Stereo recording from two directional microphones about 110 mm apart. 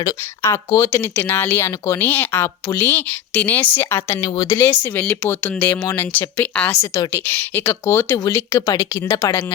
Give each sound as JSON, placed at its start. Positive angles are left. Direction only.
{"t": 0.0, "sound": "a woman's voice", "side_deg": 30}
{"t": 1.1, "sound": "a woman's voice", "side_deg": 20}